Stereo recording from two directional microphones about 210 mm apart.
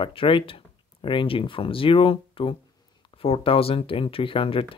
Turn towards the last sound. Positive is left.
turn(degrees=25)  # may be behind; listen again after turning